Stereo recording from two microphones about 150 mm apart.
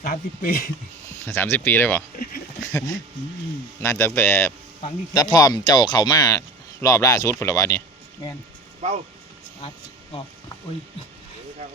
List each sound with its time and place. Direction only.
0.0 s speech: 75° left (ahead or behind)
1.2 s speech: 15° left (ahead or behind)
3.8 s speech: 15° left (ahead or behind)
5.1 s speech: 25° left (ahead or behind)
8.8 s speech: 45° right (ahead or behind)